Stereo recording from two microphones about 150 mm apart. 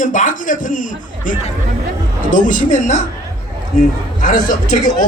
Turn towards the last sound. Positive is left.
turn(degrees=60)  # may be behind; listen again after turning